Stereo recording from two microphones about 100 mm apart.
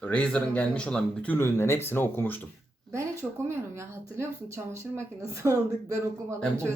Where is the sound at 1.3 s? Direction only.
25° left (ahead or behind).